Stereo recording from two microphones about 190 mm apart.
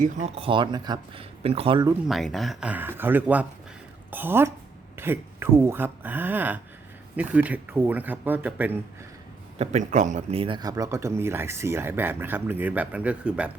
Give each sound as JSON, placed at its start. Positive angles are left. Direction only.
{"t": 0.0, "sound": "speech", "side_deg": -35}
{"t": 1.9, "sound": "speech", "side_deg": 0}
{"t": 9.6, "sound": "speech", "side_deg": -40}